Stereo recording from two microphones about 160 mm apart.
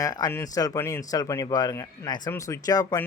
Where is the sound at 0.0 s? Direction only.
20° left (ahead or behind).